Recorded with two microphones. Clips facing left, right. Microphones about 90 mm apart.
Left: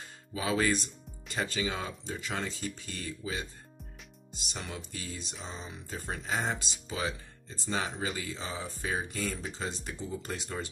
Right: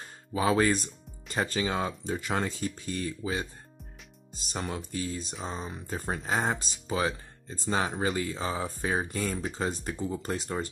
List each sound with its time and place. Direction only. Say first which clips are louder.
0.3 s speech: right 5 dB; 35° right (ahead or behind)
6.0 s speech: right 4 dB; 35° right (ahead or behind)